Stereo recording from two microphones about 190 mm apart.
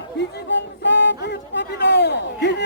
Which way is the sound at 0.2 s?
65° left (ahead or behind).